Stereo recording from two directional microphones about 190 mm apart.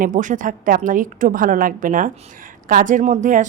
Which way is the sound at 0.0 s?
40° right (ahead or behind).